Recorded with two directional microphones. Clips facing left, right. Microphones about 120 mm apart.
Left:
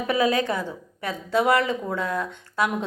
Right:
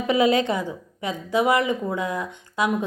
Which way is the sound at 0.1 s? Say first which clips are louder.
Right 3 dB; 25° right (ahead or behind).